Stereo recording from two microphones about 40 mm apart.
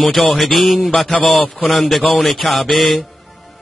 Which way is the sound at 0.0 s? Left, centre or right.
Centre.